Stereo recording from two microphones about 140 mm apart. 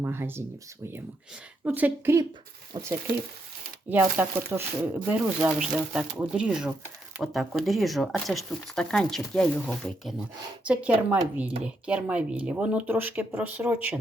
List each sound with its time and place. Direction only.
0.0 s speech: 15° right (ahead or behind)
1.6 s speech: 10° right (ahead or behind)
2.7 s speech: 35° right (ahead or behind)
3.8 s speech: 15° right (ahead or behind)